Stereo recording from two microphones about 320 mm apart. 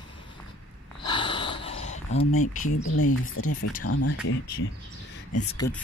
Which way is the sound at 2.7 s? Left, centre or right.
Left.